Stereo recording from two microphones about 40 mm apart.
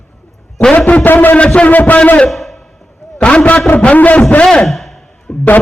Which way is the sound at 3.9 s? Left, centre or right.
Left.